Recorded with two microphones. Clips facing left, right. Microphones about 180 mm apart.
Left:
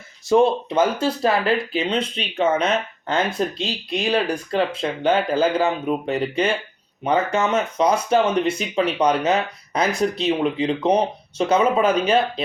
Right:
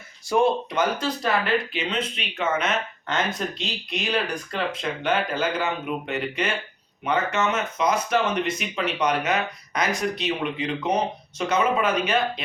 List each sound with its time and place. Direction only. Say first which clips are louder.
0.3 s speech: left 4 dB; 25° left (ahead or behind)